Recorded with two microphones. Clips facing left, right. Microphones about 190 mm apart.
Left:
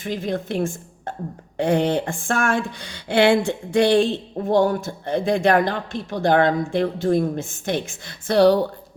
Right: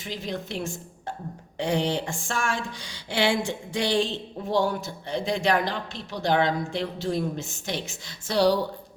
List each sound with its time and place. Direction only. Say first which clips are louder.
0.0 s a woman's voice: left 7 dB; 50° left (ahead or behind)